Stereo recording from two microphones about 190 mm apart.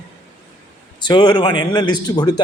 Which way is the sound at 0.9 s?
25° left (ahead or behind).